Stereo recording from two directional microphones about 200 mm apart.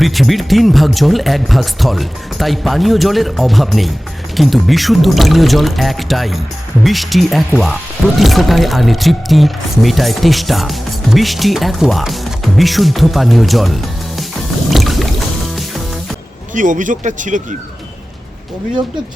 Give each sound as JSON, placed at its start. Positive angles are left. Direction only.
{"t": 0.0, "sound": "speech", "side_deg": 0}
{"t": 14.7, "sound": "boat", "side_deg": 0}
{"t": 16.6, "sound": "speech", "side_deg": -40}